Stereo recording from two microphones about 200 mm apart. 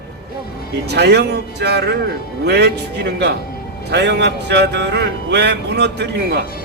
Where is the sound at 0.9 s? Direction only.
55° right (ahead or behind).